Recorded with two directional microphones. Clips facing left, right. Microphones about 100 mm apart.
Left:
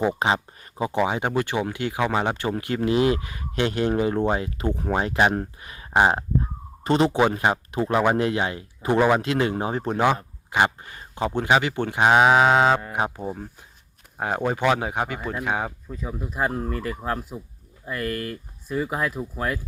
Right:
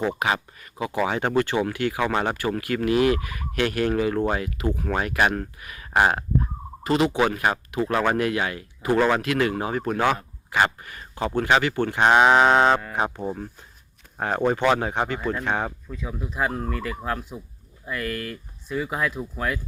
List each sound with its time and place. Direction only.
0.2 s speech: 30° left (ahead or behind)
0.9 s speech: 15° left (ahead or behind)
9.0 s speech: 15° left (ahead or behind)
9.2 s speech: 25° left (ahead or behind); by 16.4 s centre (ahead or behind)
16.6 s speech: 35° left (ahead or behind)
17.3 s speech: 5° right (ahead or behind)
17.9 s speech: 40° left (ahead or behind)
19.2 s speech: 5° left (ahead or behind)